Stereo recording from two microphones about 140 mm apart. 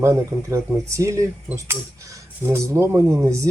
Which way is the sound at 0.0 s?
20° right (ahead or behind).